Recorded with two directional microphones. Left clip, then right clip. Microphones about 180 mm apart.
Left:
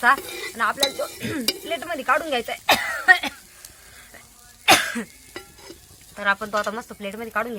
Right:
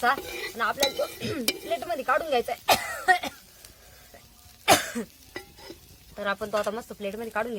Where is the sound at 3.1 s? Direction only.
65° right (ahead or behind).